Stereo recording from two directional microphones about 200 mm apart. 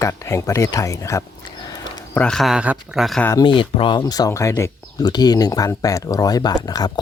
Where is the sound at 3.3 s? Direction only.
25° left (ahead or behind).